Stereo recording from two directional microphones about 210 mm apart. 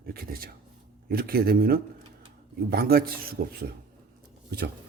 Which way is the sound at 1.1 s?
45° right (ahead or behind).